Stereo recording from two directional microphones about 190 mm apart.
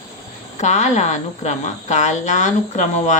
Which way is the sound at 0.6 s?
40° left (ahead or behind).